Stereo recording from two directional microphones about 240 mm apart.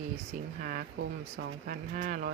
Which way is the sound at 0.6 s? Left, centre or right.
Right.